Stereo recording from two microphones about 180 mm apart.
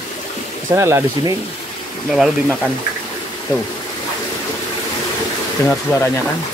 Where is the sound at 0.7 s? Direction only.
15° right (ahead or behind).